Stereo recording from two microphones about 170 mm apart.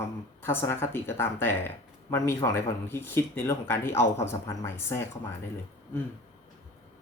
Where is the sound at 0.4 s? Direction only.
15° left (ahead or behind).